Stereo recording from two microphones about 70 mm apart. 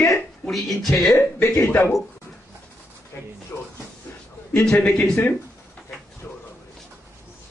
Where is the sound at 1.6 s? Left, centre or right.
Left.